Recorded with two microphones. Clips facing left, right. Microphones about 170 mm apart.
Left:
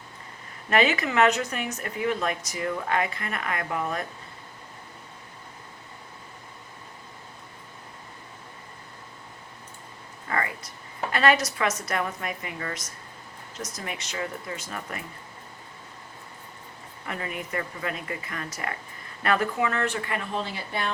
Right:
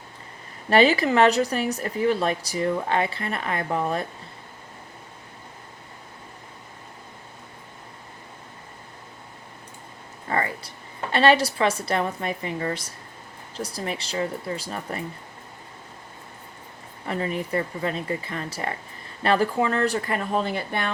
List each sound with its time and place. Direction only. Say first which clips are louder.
0.7 s speech: right 5 dB; 35° right (ahead or behind)
10.2 s air conditioning: right 3 dB; 30° right (ahead or behind)
11.1 s a woman's voice: right 4 dB; 30° right (ahead or behind)
17.1 s speech: right 6 dB; 30° right (ahead or behind); by 20.9 s 55° right (ahead or behind)